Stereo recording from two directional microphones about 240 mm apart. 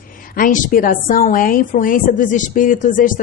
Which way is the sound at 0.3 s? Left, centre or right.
Left.